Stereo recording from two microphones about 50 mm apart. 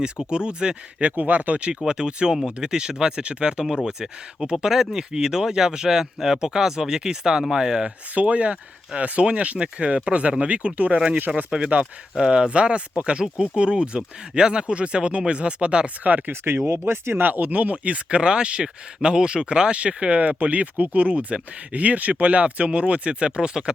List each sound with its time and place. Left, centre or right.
0.3 s speech: centre
1.1 s speech: right; by 7.9 s centre
8.1 s speech: right
16.0 s speech: right
16.3 s speech: right; by 23.7 s centre